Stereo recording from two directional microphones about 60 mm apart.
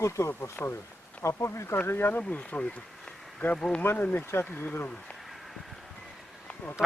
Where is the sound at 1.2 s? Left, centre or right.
Left.